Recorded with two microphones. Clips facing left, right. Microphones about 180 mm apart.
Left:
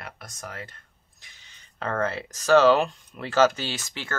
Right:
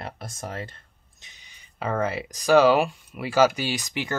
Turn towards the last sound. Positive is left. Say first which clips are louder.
# right 5 dB
turn(degrees=-15)  # may be behind; listen again after turning